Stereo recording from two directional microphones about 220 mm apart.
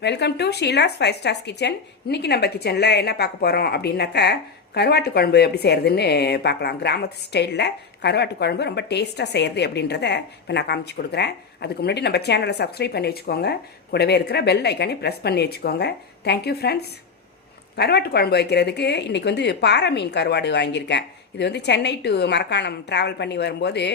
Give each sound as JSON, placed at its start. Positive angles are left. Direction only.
{"t": 0.0, "sound": "speech", "side_deg": 50}
{"t": 17.7, "sound": "speech", "side_deg": 45}